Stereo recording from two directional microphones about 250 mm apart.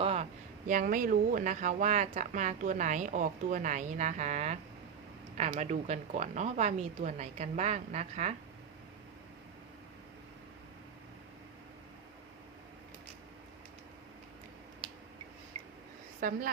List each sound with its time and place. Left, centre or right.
0.0 s a sound: right
0.7 s speech: right
16.2 s a woman's voice: right